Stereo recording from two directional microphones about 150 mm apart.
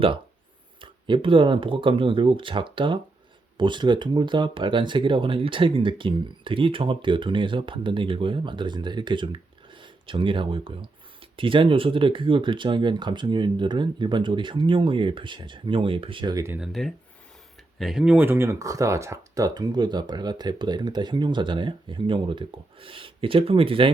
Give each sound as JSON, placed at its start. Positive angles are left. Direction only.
{"t": 0.8, "sound": "speech", "side_deg": -35}
{"t": 16.6, "sound": "speech", "side_deg": 0}